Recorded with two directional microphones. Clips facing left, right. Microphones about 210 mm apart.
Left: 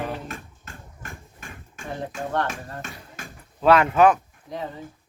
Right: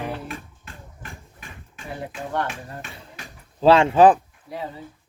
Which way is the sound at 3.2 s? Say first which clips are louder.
Left 4 dB; 45° left (ahead or behind).